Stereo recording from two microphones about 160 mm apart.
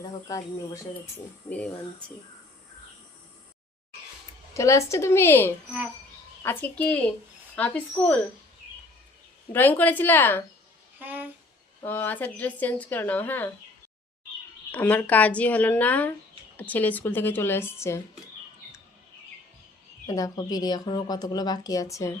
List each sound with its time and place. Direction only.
0.0 s speech: 20° left (ahead or behind)
1.5 s speech: 10° left (ahead or behind)
4.5 s speech: 20° left (ahead or behind)
9.5 s speech: 10° left (ahead or behind)
11.0 s speech: 10° right (ahead or behind)
11.9 s speech: 10° left (ahead or behind)
14.7 s speech: 10° left (ahead or behind)
20.1 s speech: 20° left (ahead or behind)